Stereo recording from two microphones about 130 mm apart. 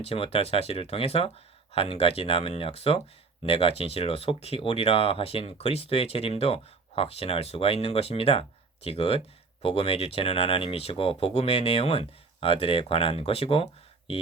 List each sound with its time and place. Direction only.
0.0 s speech: 45° left (ahead or behind)